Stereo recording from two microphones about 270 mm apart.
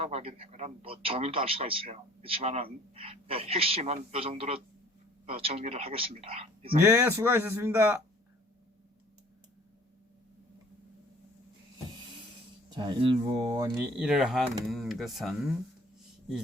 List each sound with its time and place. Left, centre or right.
0.0 s speech: right
6.8 s speech: centre
12.7 s speech: centre
13.7 s speech: centre